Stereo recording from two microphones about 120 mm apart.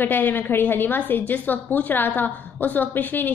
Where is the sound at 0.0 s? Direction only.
15° left (ahead or behind).